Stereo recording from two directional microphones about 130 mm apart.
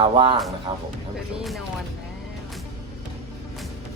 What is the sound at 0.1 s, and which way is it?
Speech, 45° right (ahead or behind).